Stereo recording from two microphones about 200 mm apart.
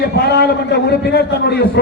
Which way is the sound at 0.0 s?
55° left (ahead or behind).